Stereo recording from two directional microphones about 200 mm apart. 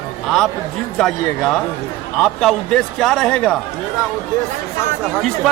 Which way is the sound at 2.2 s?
Centre (ahead or behind).